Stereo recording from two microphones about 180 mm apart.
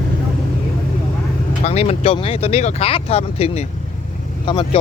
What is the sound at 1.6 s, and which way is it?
Speech, 35° left (ahead or behind).